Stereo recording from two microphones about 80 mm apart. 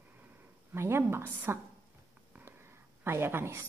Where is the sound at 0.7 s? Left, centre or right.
Right.